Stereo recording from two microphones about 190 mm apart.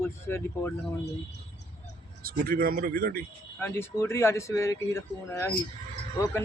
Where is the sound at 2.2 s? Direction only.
50° right (ahead or behind).